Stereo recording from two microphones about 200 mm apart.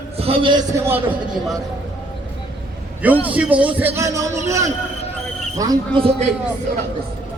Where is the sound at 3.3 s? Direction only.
5° right (ahead or behind); by 6.3 s 25° right (ahead or behind).